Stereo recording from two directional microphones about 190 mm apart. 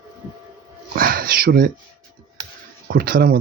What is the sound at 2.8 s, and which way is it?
Speech, 50° right (ahead or behind).